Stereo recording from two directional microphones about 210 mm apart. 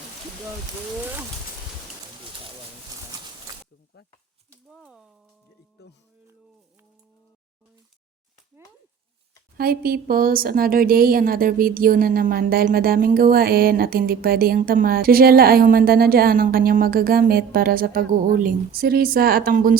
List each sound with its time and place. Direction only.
4.7 s speech: centre (ahead or behind)
5.8 s speech: 50° left (ahead or behind)
9.6 s a woman's voice: 45° right (ahead or behind)